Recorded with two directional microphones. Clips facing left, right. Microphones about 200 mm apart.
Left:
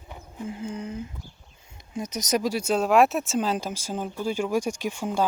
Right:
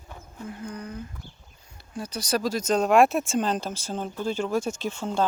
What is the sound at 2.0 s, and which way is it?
Speech, 20° left (ahead or behind).